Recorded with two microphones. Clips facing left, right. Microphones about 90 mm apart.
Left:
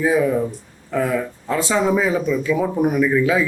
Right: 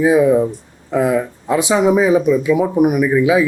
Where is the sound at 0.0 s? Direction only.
15° right (ahead or behind).